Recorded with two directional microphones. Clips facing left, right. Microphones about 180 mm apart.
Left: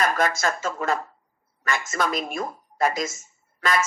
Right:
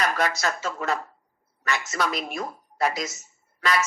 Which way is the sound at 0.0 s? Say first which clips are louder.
Left 2 dB; 50° left (ahead or behind).